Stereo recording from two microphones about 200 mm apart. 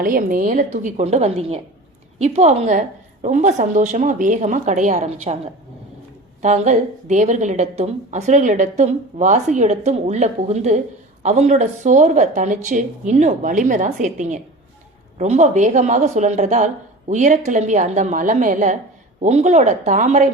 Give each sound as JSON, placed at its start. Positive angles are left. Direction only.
{"t": 0.0, "sound": "a woman's voice", "side_deg": -45}